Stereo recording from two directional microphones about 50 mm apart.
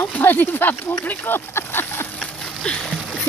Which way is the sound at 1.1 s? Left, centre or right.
Left.